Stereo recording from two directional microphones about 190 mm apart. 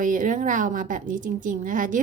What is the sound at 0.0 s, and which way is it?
A woman's voice, 45° right (ahead or behind).